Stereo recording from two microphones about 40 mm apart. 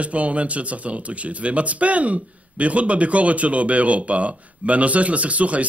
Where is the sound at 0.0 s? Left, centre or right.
Right.